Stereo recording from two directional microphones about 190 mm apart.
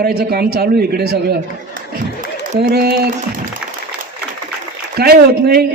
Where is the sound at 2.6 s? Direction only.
55° right (ahead or behind).